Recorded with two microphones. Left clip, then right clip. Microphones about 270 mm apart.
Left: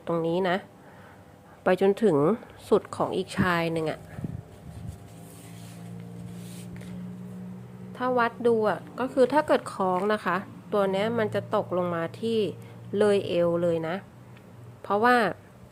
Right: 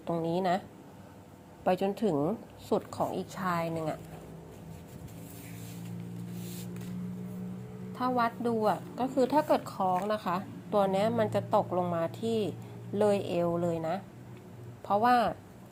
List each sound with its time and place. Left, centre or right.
0.3 s a woman's voice: centre
1.6 s a woman's voice: left
7.9 s a woman's voice: centre
13.4 s a woman's voice: left
13.7 s a woman's voice: centre